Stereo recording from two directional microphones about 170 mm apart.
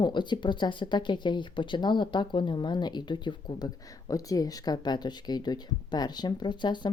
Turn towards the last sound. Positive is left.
turn(degrees=25)  # may be behind; listen again after turning